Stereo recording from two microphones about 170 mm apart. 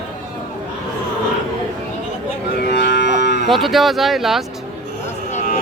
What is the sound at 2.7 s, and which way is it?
Livestock, 85° left.